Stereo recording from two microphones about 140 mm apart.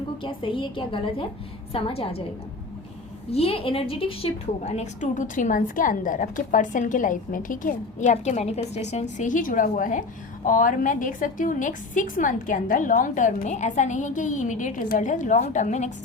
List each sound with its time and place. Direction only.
0.2 s a woman's voice: 40° left (ahead or behind)
3.3 s a woman's voice: 45° left (ahead or behind)
4.6 s a woman's voice: 55° left (ahead or behind)